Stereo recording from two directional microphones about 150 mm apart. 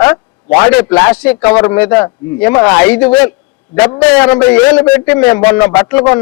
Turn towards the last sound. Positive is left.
turn(degrees=10)  # may be behind; listen again after turning